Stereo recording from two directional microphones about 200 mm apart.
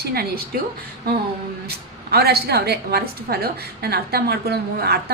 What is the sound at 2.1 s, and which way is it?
A woman's voice, 50° right (ahead or behind).